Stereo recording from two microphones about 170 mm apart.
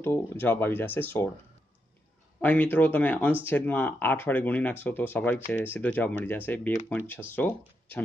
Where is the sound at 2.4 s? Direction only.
10° left (ahead or behind).